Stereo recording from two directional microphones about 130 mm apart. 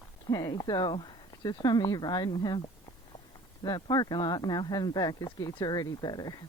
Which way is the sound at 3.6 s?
30° left (ahead or behind).